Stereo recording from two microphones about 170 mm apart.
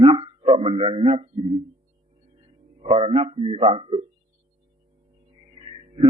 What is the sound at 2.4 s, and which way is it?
A man's voice, 30° right (ahead or behind).